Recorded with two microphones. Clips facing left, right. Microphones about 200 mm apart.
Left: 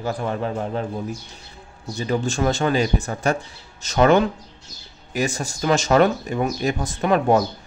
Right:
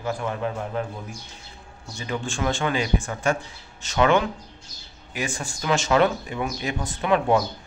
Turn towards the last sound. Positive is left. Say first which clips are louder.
# left 3 dB
turn(degrees=45)  # may be behind; listen again after turning